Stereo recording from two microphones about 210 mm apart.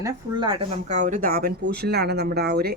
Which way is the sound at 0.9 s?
35° right (ahead or behind).